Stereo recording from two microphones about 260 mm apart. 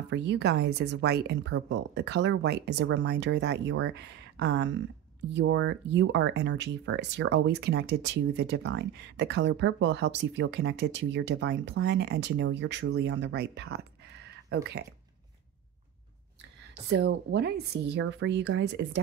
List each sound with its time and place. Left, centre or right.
0.1 s speech: right
16.9 s speech: right